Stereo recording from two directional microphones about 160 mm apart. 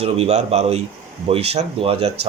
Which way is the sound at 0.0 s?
40° right (ahead or behind).